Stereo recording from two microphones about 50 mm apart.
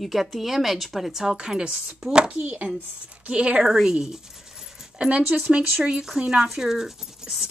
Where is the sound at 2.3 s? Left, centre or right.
Right.